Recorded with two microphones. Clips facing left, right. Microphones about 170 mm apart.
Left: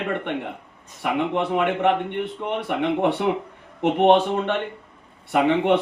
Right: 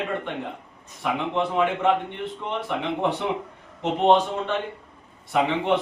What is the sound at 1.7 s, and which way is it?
A man's voice, 65° left (ahead or behind).